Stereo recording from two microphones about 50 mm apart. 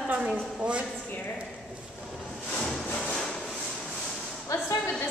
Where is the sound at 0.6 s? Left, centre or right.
Right.